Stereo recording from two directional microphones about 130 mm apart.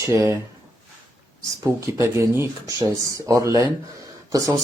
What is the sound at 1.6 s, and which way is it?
Speech, 25° right (ahead or behind).